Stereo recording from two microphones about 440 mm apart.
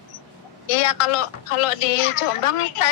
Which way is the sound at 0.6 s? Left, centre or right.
Left.